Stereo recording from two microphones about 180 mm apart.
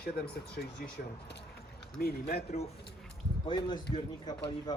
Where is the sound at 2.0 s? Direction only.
60° left (ahead or behind).